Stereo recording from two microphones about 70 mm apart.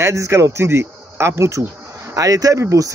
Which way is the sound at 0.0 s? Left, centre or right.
Right.